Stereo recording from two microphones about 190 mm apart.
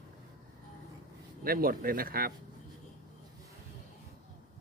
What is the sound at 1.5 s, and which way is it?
Speech, 50° right (ahead or behind).